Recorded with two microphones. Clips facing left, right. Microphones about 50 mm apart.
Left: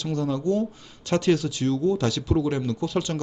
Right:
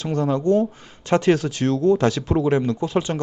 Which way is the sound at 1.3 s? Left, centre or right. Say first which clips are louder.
Right 1 dB; right.